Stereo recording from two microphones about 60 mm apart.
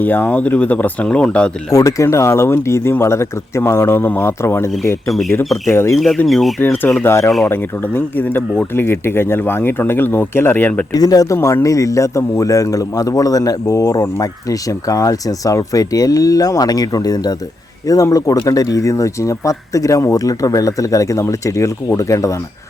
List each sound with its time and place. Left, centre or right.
0.0 s speech: left
1.0 s speech: centre
1.7 s speech: left
6.2 s speech: centre
6.6 s speech: left
7.0 s speech: left
7.5 s speech: left
10.9 s speech: left
11.6 s a man's voice: left
17.8 s a man's voice: left